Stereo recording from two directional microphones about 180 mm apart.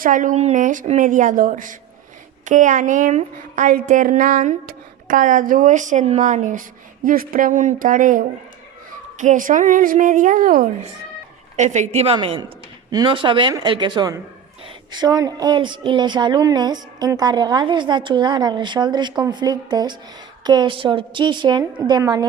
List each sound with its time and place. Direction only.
0.0 s a woman's voice: 45° right (ahead or behind)
11.5 s a woman's voice: 40° right (ahead or behind); by 22.3 s 20° right (ahead or behind)